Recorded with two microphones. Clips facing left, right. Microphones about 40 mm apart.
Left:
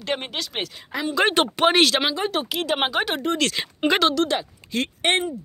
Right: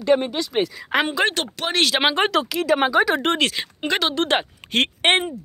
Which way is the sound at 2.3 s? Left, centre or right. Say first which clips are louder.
Right 5 dB; right.